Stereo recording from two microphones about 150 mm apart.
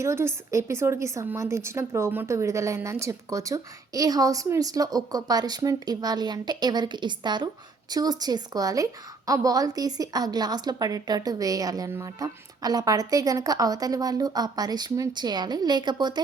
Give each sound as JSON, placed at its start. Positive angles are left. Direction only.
{"t": 0.0, "sound": "a woman's voice", "side_deg": -20}